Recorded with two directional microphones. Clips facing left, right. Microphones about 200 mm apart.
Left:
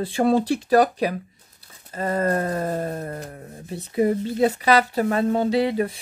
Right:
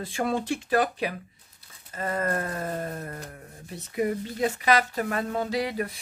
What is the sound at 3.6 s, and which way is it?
Speech, 30° left (ahead or behind).